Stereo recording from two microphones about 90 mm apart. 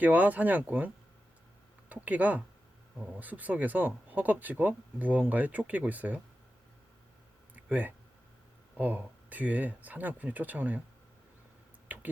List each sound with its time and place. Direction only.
0.0 s speech: 20° right (ahead or behind)
2.0 s speech: 15° right (ahead or behind)
7.5 s a sound: 20° right (ahead or behind)
8.8 s speech: 20° right (ahead or behind)